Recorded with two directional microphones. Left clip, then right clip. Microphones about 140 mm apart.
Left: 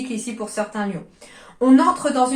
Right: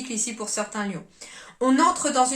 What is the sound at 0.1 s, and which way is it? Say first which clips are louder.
A woman's voice: left 2 dB; 25° right (ahead or behind).